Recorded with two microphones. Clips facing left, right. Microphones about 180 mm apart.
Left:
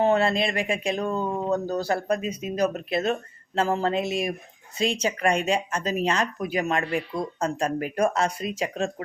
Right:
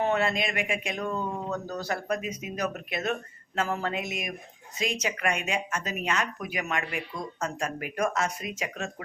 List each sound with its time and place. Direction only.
0.0 s speech: 30° left (ahead or behind)